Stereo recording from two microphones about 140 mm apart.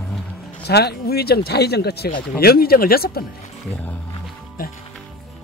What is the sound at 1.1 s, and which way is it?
Speech, 90° left.